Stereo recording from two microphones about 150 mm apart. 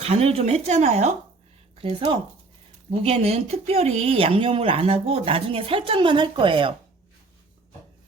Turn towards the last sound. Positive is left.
turn(degrees=-35)  # may be behind; listen again after turning